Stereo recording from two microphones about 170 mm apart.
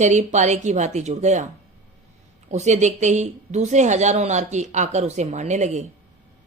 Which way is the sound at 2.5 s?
45° right (ahead or behind).